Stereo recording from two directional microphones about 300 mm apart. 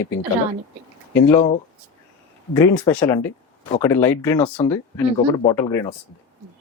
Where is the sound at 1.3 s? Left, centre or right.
Centre.